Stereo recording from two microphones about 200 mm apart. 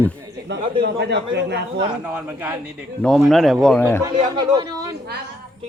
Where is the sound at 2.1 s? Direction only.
10° right (ahead or behind).